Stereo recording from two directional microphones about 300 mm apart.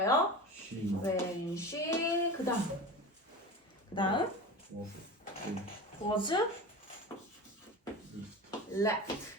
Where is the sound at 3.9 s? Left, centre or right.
Centre.